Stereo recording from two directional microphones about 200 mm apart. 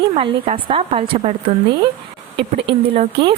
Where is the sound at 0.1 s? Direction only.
30° right (ahead or behind).